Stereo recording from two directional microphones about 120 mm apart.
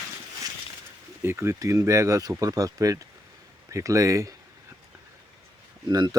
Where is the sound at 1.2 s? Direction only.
25° right (ahead or behind).